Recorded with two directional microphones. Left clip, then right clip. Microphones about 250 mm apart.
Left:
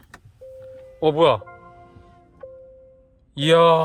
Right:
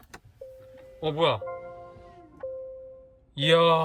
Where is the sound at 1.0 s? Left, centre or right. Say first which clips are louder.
Left 8 dB; centre.